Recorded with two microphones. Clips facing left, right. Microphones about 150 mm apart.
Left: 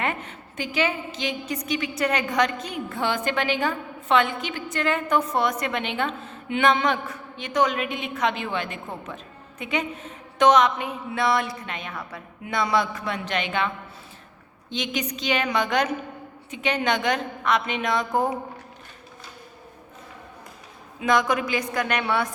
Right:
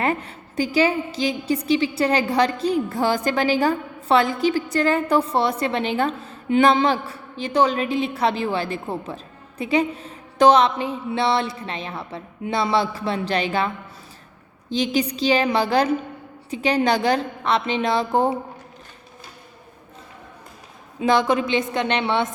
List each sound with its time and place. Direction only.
0.0 s a woman's voice: 35° right (ahead or behind)
14.7 s a woman's voice: 35° right (ahead or behind)
21.0 s a woman's voice: 30° right (ahead or behind)